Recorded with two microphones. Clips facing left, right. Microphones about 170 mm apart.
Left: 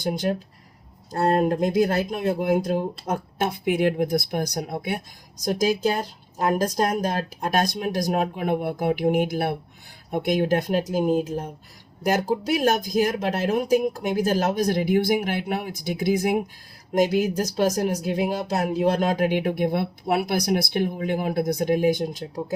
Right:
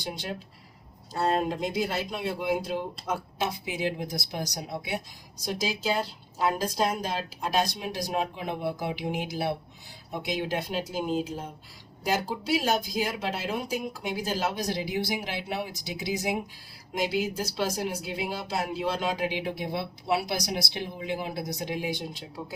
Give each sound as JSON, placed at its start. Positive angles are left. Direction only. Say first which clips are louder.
{"t": 0.0, "sound": "speech", "louder": "left 10 dB", "side_deg": 50}